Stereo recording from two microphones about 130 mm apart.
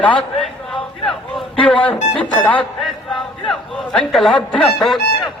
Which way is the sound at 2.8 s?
5° left (ahead or behind).